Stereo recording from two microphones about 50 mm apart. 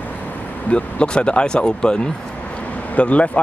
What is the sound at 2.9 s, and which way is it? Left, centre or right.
Speech, left.